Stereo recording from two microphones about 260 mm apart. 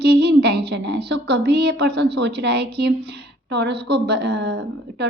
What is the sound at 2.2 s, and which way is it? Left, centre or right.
A woman's voice, right.